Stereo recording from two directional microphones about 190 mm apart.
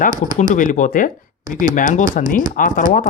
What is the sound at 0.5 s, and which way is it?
Speech, 40° left (ahead or behind).